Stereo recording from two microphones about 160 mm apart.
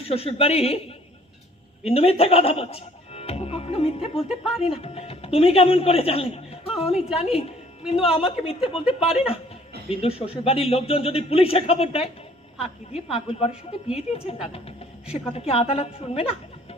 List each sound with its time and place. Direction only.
0.1 s a man's voice: 40° left (ahead or behind)